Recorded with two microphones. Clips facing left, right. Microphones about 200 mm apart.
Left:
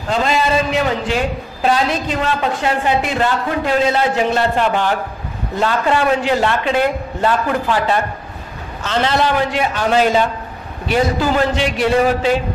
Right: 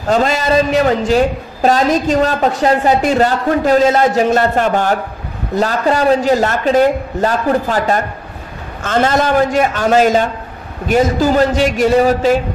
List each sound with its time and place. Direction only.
0.1 s a man's voice: 40° right (ahead or behind)